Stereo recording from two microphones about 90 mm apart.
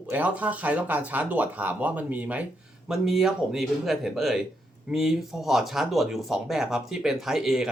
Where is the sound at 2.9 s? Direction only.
5° right (ahead or behind).